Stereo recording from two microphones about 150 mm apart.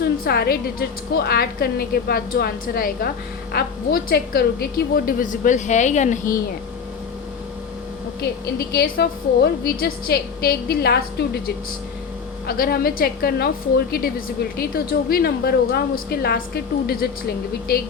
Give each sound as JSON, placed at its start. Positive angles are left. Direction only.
{"t": 0.0, "sound": "a woman's voice", "side_deg": 90}
{"t": 8.2, "sound": "a woman's voice", "side_deg": 90}